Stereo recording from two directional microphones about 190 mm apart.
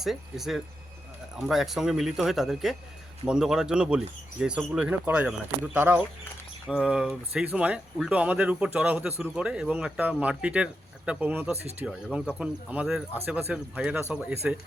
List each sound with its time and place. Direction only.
0.0 s speech: centre (ahead or behind)